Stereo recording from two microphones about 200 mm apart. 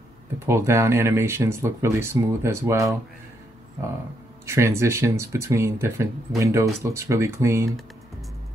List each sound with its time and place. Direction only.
0.5 s speech: 15° right (ahead or behind)
4.5 s speech: 15° right (ahead or behind)